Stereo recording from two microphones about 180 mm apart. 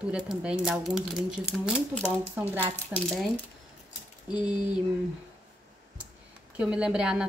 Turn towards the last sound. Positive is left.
turn(degrees=-5)  # may be behind; listen again after turning